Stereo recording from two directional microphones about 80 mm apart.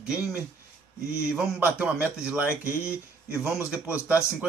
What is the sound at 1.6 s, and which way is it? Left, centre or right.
Speech, centre.